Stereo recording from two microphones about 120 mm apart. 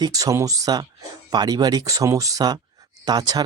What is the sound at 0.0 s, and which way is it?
Speech, 30° right (ahead or behind).